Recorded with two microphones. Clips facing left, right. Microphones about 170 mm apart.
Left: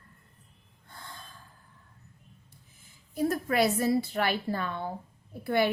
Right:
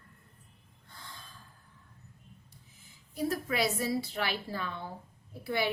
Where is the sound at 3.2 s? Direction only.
50° left (ahead or behind).